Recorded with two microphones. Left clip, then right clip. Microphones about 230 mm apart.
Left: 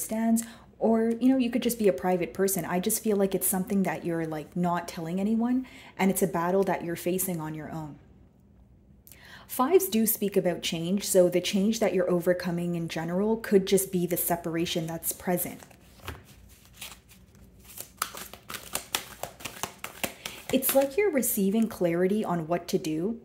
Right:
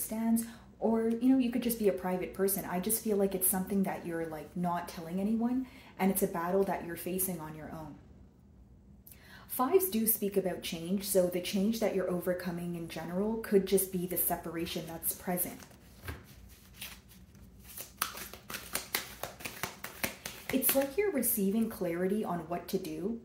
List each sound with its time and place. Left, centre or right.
0.1 s a woman's voice: left
9.6 s a woman's voice: left
19.2 s a sound: left
20.9 s a woman's voice: left